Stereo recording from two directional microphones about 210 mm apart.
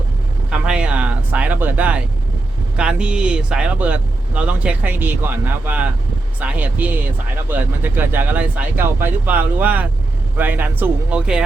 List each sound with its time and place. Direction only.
0.5 s speech: 5° right (ahead or behind)